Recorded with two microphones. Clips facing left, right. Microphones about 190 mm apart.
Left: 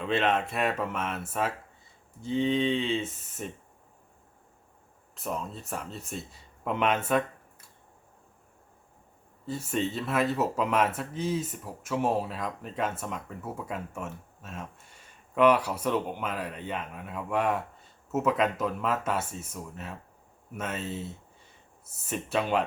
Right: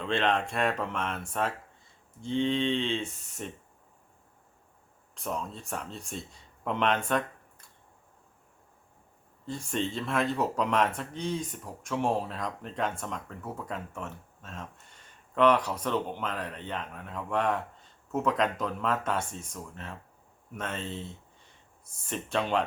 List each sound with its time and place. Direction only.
0.0 s speech: 5° left (ahead or behind)
5.1 s speech: 5° left (ahead or behind)
9.5 s speech: 5° left (ahead or behind)